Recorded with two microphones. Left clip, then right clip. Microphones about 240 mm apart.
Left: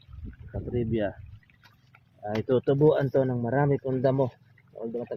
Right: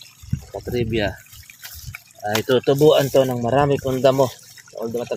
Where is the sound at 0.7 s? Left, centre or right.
Centre.